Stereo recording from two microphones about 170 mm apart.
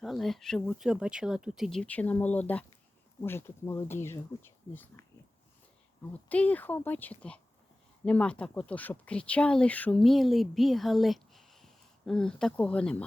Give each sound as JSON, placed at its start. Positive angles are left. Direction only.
{"t": 0.0, "sound": "speech", "side_deg": 0}
{"t": 6.2, "sound": "speech", "side_deg": 10}